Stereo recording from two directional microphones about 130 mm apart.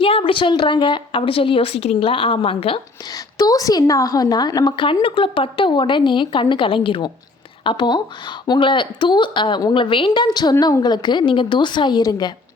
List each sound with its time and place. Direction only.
0.0 s a woman's voice: 45° left (ahead or behind)
3.1 s speech: 30° left (ahead or behind)